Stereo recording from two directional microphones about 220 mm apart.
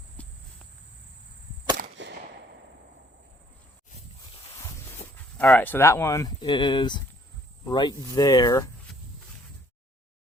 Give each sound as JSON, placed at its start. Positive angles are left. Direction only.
{"t": 0.2, "sound": "cricket", "side_deg": 5}
{"t": 2.0, "sound": "a sound", "side_deg": -55}
{"t": 5.1, "sound": "speech", "side_deg": 5}